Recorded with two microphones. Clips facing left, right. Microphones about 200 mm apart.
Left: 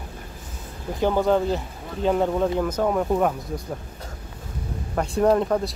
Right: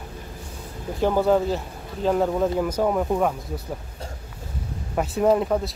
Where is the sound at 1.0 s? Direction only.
5° right (ahead or behind).